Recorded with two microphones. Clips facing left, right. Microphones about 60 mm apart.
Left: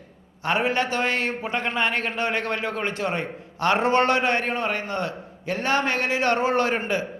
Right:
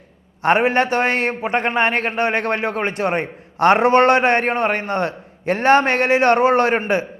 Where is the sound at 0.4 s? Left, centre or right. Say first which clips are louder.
Right 7 dB; right.